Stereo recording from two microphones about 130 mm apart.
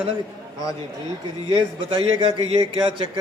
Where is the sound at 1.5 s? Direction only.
40° right (ahead or behind).